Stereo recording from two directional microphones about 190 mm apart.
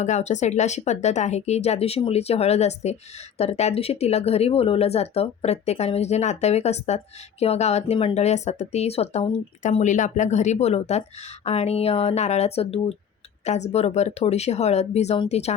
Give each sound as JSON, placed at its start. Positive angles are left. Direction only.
{"t": 0.0, "sound": "speech", "side_deg": 40}